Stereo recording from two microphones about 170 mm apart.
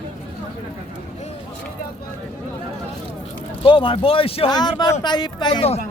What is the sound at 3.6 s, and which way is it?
Speech, 30° left (ahead or behind).